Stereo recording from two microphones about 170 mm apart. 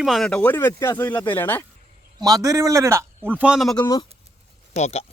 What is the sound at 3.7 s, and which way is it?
Speech, 25° left (ahead or behind).